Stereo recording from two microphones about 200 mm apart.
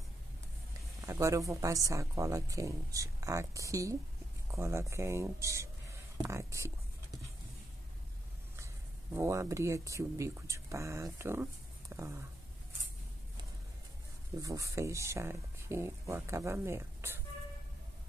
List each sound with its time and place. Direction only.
1.0 s speech: 15° right (ahead or behind)
9.1 s speech: 15° right (ahead or behind)
11.9 s a sound: 15° right (ahead or behind)
14.4 s speech: 15° right (ahead or behind)